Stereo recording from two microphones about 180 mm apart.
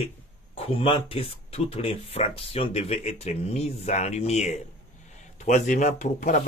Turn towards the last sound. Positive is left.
turn(degrees=45)  # may be behind; listen again after turning